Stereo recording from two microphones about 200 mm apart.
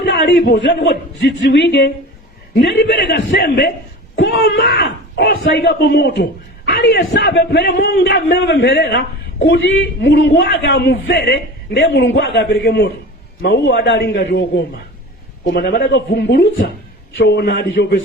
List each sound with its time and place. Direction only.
0.0 s a man's voice: 55° left (ahead or behind)
15.4 s a man's voice: 55° left (ahead or behind)